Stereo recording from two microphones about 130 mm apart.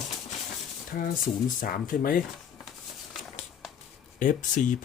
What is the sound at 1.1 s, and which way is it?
Speech, 90° left.